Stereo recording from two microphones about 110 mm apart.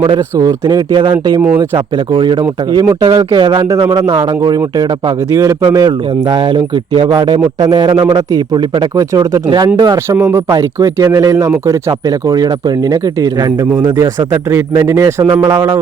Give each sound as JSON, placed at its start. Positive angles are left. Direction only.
{"t": 0.0, "sound": "speech", "side_deg": -35}
{"t": 2.1, "sound": "speech", "side_deg": -50}
{"t": 5.6, "sound": "speech", "side_deg": -40}
{"t": 7.1, "sound": "speech", "side_deg": -35}
{"t": 10.1, "sound": "speech", "side_deg": -25}
{"t": 14.5, "sound": "speech", "side_deg": -25}